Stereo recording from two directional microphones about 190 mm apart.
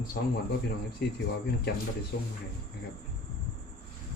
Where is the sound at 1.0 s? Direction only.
55° left (ahead or behind).